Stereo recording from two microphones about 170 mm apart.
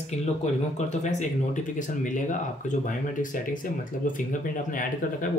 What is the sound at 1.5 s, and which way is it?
Speech, 50° left (ahead or behind).